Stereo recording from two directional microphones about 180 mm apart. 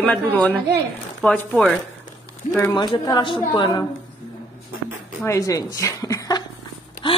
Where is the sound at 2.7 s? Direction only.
25° left (ahead or behind).